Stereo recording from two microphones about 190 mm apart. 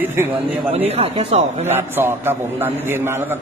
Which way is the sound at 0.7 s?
30° right (ahead or behind).